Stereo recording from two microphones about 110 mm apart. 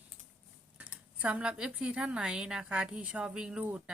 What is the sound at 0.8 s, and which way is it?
A woman's voice, 10° right (ahead or behind).